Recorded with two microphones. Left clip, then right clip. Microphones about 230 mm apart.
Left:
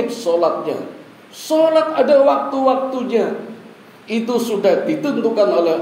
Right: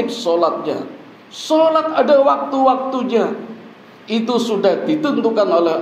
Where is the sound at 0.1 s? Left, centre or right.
Right.